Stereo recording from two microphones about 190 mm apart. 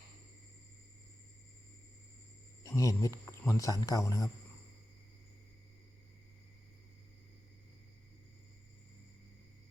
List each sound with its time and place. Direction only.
2.6 s speech: 15° left (ahead or behind)